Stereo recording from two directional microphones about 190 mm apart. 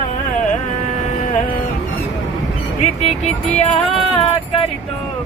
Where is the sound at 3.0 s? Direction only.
35° left (ahead or behind).